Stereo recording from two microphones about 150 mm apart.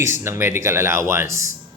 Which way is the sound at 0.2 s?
15° right (ahead or behind).